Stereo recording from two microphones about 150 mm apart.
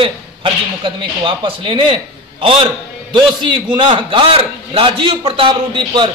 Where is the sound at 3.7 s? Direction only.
35° right (ahead or behind).